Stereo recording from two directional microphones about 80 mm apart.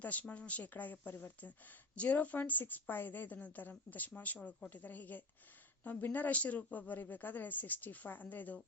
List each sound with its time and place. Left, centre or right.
0.0 s a woman's voice: centre